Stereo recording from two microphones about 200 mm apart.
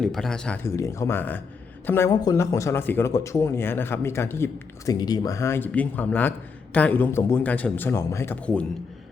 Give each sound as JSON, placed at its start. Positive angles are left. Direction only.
{"t": 0.0, "sound": "speech", "side_deg": 0}